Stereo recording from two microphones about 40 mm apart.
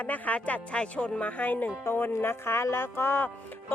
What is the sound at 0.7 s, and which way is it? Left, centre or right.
Speech, left.